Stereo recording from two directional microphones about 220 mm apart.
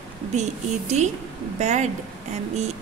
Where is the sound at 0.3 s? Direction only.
30° right (ahead or behind).